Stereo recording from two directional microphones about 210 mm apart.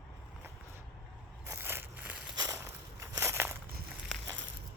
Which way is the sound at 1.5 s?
10° right (ahead or behind).